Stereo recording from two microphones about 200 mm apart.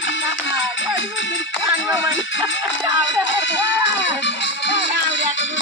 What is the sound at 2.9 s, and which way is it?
Speech, 65° left (ahead or behind).